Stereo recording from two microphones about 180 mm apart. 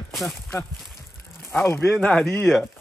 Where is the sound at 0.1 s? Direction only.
Centre (ahead or behind).